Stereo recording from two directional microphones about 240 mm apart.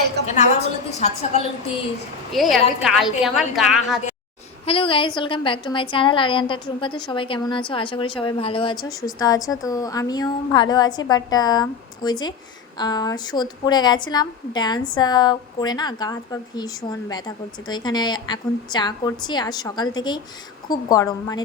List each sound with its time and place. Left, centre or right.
0.9 s a woman's voice: left
2.3 s a woman's voice: centre
4.6 s a woman's voice: left